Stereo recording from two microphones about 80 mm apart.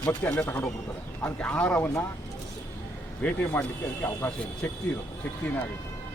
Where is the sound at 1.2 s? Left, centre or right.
Centre.